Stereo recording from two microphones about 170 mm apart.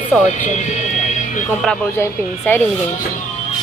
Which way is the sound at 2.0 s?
10° left (ahead or behind).